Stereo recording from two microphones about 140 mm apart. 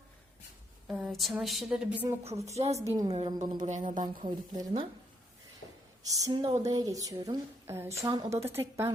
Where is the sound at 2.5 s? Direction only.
50° right (ahead or behind).